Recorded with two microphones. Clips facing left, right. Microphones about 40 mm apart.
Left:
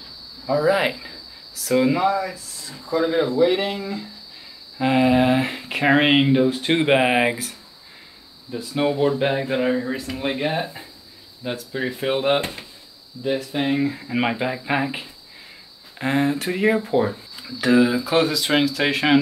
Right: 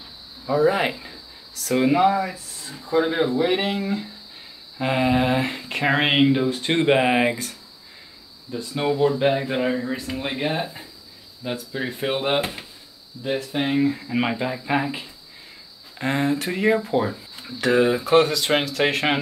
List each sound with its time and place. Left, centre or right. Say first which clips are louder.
0.0 s a sound: left 2 dB; right
0.7 s speech: left 2 dB; centre
1.9 s speech: right 2 dB; centre
2.3 s speech: even; right
3.3 s speech: left 2 dB; centre
4.7 s speech: left 3 dB; centre
16.0 s speech: left 1 dB; centre
17.7 s speech: left 1 dB; centre
18.1 s speech: right 4 dB; centre